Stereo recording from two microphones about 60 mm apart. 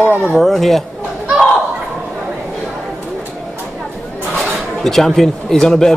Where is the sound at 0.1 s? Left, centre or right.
Right.